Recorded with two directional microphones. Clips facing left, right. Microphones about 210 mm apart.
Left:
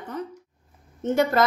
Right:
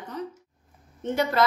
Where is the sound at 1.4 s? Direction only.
45° left (ahead or behind).